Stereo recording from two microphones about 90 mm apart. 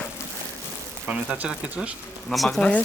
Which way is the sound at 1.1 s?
15° right (ahead or behind).